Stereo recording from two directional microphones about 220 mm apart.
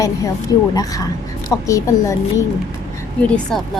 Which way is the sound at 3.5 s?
Centre (ahead or behind).